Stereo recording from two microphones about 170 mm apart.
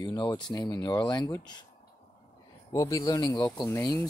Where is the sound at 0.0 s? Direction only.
20° left (ahead or behind).